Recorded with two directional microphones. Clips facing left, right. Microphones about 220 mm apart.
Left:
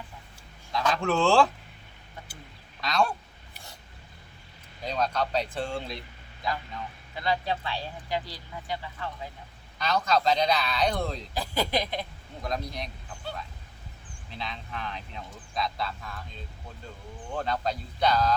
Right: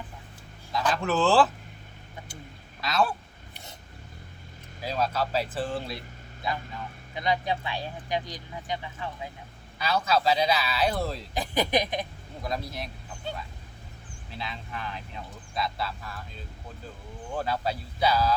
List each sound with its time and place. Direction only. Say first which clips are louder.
0.7 s speech: even; centre (ahead or behind)
2.8 s a sound: even; 5° right (ahead or behind)
4.8 s speech: even; 5° right (ahead or behind)
7.1 s speech: right 1 dB; 15° right (ahead or behind)
9.7 s speech: even; 5° right (ahead or behind)
11.3 s speech: right 3 dB; 20° right (ahead or behind)
12.4 s speech: even; 5° right (ahead or behind)
14.3 s speech: even; 5° right (ahead or behind)
17.3 s speech: even; 5° right (ahead or behind)